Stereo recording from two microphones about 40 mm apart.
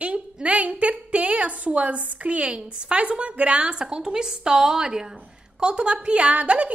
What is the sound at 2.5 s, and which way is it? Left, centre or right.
A woman's voice, right.